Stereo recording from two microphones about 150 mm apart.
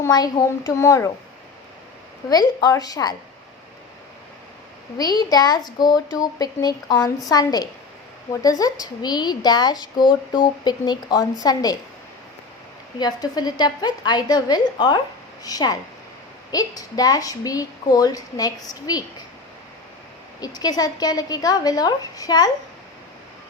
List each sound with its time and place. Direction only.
0.0 s speech: 25° left (ahead or behind)
2.3 s speech: 25° left (ahead or behind)
4.9 s speech: 25° left (ahead or behind)
13.0 s speech: 25° left (ahead or behind)
20.4 s speech: 25° left (ahead or behind)